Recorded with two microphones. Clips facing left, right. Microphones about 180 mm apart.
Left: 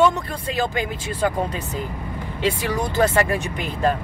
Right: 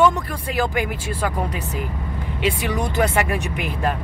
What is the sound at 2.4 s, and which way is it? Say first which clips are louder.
Speech: even; 15° right (ahead or behind).